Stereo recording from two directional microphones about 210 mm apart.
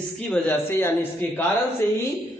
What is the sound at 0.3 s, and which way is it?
A man's voice, 10° left (ahead or behind).